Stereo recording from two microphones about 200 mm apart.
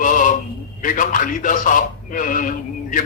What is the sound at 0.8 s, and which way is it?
A man's voice, 40° left (ahead or behind).